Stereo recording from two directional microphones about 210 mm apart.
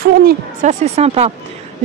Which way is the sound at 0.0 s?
40° right (ahead or behind).